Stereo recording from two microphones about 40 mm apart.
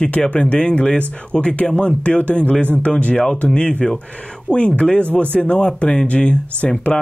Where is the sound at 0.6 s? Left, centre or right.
Left.